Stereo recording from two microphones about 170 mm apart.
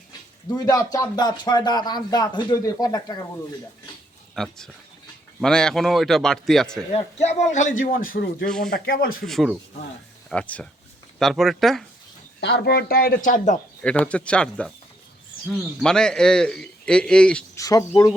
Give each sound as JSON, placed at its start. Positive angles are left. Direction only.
{"t": 0.5, "sound": "speech", "side_deg": 20}
{"t": 4.4, "sound": "a man's voice", "side_deg": 5}
{"t": 6.9, "sound": "a man's voice", "side_deg": 40}
{"t": 8.4, "sound": "a man's voice", "side_deg": 5}
{"t": 8.7, "sound": "speech", "side_deg": 65}
{"t": 9.2, "sound": "a man's voice", "side_deg": 0}
{"t": 12.4, "sound": "speech", "side_deg": 85}
{"t": 13.8, "sound": "a man's voice", "side_deg": 5}
{"t": 17.6, "sound": "speech", "side_deg": 20}